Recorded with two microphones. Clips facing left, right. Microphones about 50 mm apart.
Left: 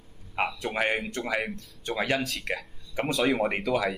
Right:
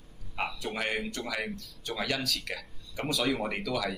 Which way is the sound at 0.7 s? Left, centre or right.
Left.